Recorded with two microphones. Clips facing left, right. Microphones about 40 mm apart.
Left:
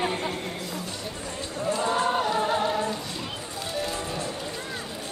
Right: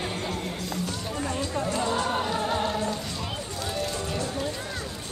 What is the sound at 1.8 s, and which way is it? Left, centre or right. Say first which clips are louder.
Choir: left 6 dB; left.